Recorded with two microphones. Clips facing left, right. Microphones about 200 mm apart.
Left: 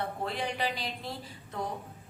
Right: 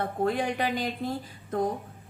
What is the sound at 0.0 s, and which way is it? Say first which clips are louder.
A woman's voice: right 7 dB; 50° right (ahead or behind).